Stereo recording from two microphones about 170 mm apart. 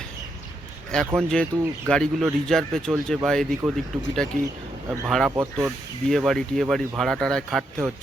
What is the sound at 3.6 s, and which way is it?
Speech, 15° right (ahead or behind).